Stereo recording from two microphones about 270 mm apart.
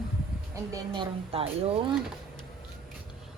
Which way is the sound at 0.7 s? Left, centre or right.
Centre.